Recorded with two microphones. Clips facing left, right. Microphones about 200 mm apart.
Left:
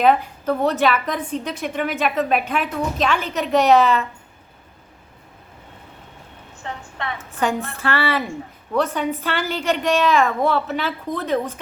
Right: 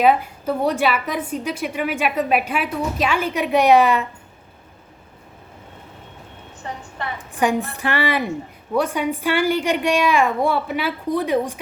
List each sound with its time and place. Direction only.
0.0 s a woman's voice: 10° right (ahead or behind)
7.0 s a woman's voice: 15° right (ahead or behind)